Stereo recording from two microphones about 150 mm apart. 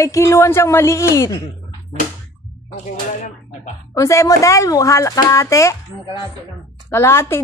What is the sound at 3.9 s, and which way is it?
A woman's voice, 20° left (ahead or behind).